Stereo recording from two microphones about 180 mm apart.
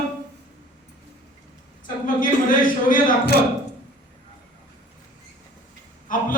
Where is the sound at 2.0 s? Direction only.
50° left (ahead or behind).